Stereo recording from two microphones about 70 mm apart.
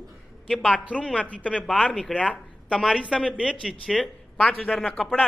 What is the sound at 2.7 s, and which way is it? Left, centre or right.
Speech, centre.